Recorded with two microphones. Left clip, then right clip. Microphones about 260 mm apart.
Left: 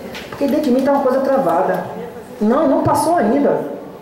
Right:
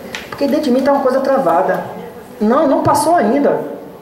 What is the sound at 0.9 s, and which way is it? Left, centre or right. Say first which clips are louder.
A woman's voice: right 3 dB; centre.